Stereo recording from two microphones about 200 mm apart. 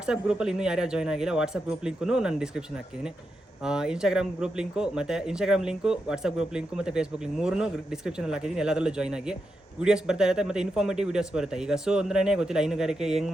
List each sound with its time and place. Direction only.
0.0 s speech: 5° right (ahead or behind)